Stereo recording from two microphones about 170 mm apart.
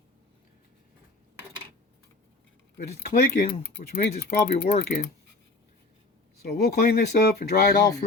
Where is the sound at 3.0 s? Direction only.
65° left (ahead or behind).